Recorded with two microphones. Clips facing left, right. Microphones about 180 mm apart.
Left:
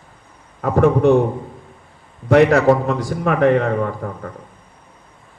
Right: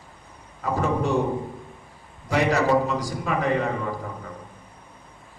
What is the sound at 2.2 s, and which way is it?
A man's voice, 60° left (ahead or behind).